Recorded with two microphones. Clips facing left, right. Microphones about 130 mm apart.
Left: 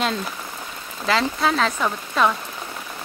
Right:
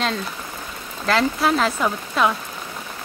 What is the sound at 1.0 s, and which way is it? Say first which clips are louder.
Speech: right 2 dB; centre (ahead or behind).